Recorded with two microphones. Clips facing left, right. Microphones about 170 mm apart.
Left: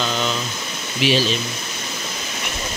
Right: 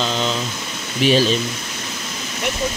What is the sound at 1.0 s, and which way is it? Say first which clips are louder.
Speech: right 3 dB; 45° right (ahead or behind).